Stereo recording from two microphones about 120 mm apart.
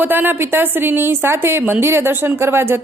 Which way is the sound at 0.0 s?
15° right (ahead or behind).